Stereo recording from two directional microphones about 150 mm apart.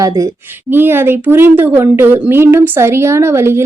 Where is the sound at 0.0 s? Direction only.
25° right (ahead or behind).